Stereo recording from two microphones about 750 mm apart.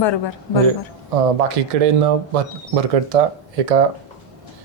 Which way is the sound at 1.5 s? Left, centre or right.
Right.